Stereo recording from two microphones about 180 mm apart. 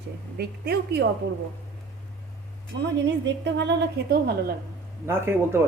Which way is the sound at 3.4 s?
75° right (ahead or behind).